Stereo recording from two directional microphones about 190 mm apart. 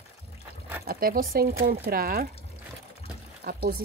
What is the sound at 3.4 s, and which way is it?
Speech, 50° right (ahead or behind).